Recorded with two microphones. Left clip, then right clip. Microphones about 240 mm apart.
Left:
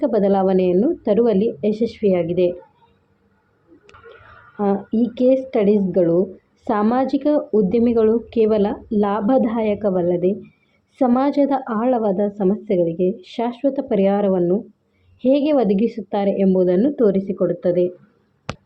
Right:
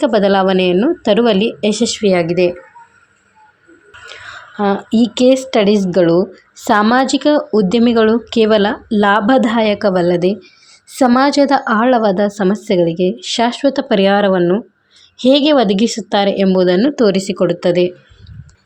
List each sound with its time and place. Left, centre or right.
0.0 s speech: right
4.6 s speech: right